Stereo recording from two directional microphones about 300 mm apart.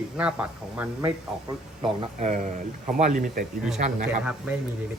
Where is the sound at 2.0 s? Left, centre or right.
Right.